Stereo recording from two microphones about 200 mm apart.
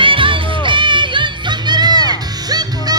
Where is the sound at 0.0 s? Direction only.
25° right (ahead or behind).